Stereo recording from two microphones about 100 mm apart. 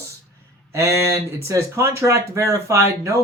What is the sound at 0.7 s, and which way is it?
Speech, 30° right (ahead or behind).